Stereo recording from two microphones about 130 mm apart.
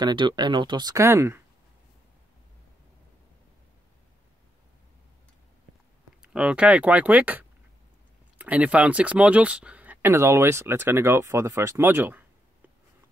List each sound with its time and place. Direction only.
0.0 s speech: 35° right (ahead or behind); by 1.4 s 20° right (ahead or behind)
6.2 s speech: 5° right (ahead or behind)